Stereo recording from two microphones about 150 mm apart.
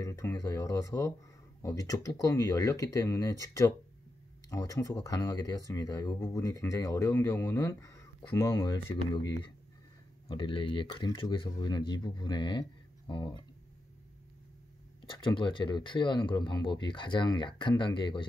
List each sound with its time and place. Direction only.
0.0 s speech: 20° left (ahead or behind)
15.0 s speech: 30° left (ahead or behind)